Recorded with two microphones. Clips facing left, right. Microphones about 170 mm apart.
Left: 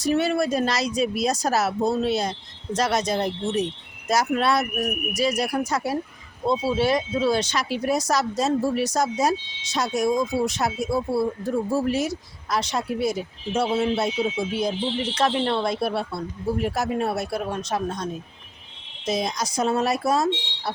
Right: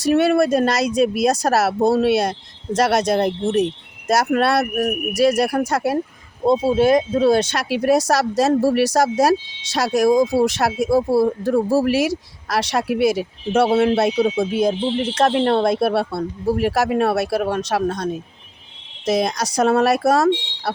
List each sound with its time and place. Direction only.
0.0 s speech: 65° right (ahead or behind)
6.4 s speech: 50° right (ahead or behind); by 14.1 s 80° right
14.6 s speech: 45° right (ahead or behind); by 16.2 s 70° right (ahead or behind)
16.6 s speech: 85° right